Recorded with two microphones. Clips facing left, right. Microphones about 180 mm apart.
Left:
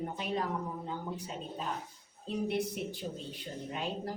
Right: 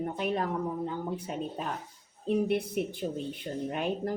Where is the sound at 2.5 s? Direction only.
55° right (ahead or behind).